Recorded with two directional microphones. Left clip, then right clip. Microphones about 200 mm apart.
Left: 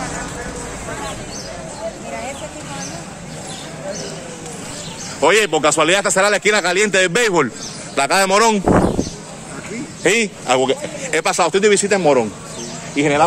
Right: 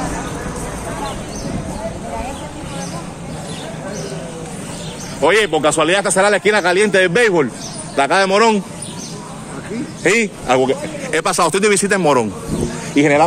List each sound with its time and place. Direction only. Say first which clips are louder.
5.2 s a man's voice: even; 25° left (ahead or behind)
10.0 s a man's voice: right 1 dB; 10° left (ahead or behind)
11.1 s speech: even; centre (ahead or behind)
11.3 s speech: left 1 dB; 25° right (ahead or behind)